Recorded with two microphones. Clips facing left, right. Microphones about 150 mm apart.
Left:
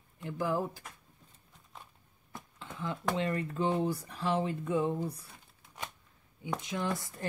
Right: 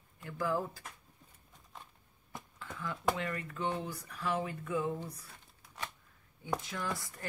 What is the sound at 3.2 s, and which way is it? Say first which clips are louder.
Speech: left 6 dB; 25° left (ahead or behind).